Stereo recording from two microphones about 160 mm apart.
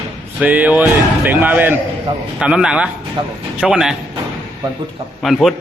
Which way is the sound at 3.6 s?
5° right (ahead or behind).